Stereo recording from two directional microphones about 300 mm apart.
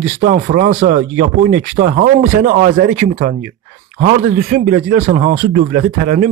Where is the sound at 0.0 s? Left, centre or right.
Right.